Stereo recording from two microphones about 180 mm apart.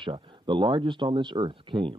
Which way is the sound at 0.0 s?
25° right (ahead or behind).